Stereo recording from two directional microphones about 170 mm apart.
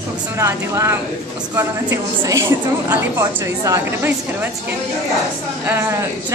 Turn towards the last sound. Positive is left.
turn(degrees=-15)  # may be behind; listen again after turning